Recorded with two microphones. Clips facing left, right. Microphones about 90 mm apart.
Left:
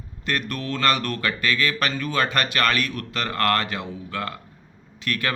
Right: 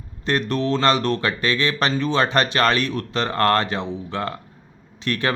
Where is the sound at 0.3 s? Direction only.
30° right (ahead or behind).